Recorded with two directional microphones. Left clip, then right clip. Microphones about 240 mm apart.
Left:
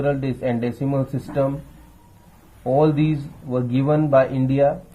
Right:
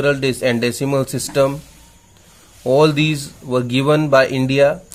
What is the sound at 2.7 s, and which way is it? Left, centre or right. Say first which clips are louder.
Speech: right 4 dB; right.